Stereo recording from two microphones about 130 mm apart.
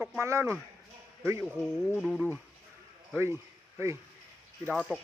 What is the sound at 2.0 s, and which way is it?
Speech, centre (ahead or behind).